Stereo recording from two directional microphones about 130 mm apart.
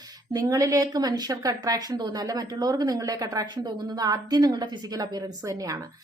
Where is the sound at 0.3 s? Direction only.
25° right (ahead or behind).